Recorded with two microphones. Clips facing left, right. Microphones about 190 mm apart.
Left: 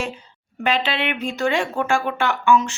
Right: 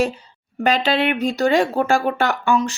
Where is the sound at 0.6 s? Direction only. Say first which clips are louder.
Right 4 dB; 40° right (ahead or behind).